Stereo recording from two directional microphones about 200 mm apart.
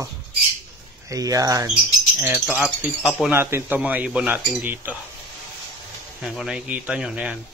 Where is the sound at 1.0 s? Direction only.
15° right (ahead or behind).